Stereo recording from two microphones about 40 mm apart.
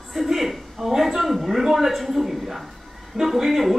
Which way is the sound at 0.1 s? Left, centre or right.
Centre.